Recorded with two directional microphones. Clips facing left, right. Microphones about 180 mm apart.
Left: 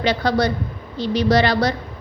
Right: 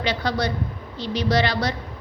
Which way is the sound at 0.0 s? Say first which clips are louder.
Left 5 dB; 40° left (ahead or behind).